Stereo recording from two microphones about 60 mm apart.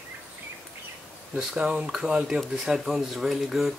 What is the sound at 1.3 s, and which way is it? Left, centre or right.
Speech, centre.